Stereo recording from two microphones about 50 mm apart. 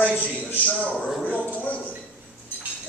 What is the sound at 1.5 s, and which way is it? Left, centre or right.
Speech, left.